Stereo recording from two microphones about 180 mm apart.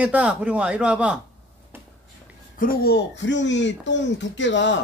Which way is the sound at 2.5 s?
55° left (ahead or behind).